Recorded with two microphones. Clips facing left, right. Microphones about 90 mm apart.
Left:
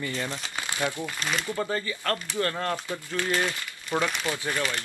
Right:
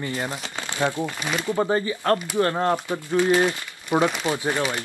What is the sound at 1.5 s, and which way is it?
Speech, 30° right (ahead or behind).